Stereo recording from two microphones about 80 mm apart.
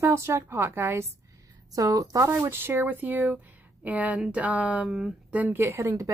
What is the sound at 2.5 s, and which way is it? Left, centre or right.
A woman's voice, right.